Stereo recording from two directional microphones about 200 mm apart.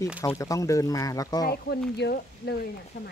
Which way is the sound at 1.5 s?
55° left (ahead or behind).